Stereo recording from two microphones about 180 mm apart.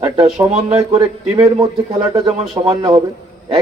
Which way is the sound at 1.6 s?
20° right (ahead or behind).